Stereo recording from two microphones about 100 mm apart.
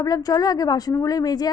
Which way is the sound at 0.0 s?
35° left (ahead or behind).